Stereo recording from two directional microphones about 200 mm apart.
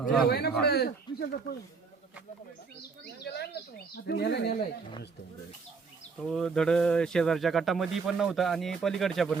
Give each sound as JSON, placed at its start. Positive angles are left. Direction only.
{"t": 0.3, "sound": "speech", "side_deg": 55}
{"t": 3.0, "sound": "speech", "side_deg": 55}
{"t": 6.1, "sound": "speech", "side_deg": 0}